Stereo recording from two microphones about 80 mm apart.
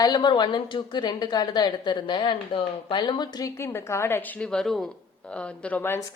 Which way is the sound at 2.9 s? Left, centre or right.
Left.